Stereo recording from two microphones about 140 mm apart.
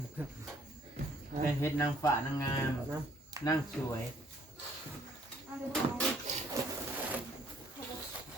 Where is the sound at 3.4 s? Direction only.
25° right (ahead or behind).